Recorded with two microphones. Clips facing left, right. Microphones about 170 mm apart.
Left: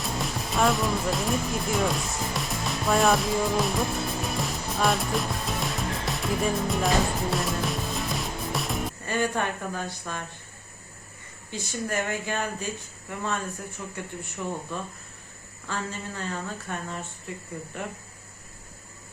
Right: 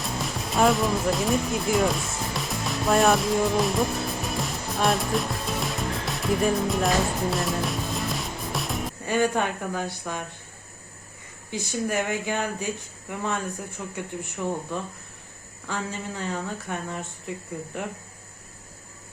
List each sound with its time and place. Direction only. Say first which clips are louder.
0.0 s music: even; centre (ahead or behind)
9.0 s speech: right 4 dB; 15° right (ahead or behind)
11.5 s speech: right 3 dB; 15° right (ahead or behind)
15.6 s speech: right 2 dB; 15° right (ahead or behind)